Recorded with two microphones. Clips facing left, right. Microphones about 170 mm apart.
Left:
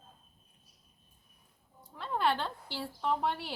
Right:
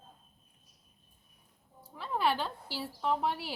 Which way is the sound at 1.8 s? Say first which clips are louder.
Even; 5° right (ahead or behind).